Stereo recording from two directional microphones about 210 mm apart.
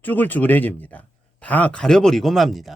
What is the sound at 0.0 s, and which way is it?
Speech, 10° left (ahead or behind).